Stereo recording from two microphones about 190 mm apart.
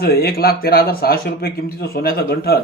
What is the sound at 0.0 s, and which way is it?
A man's voice, 55° left (ahead or behind).